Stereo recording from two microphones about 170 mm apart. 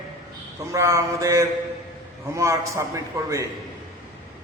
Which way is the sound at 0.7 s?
20° right (ahead or behind).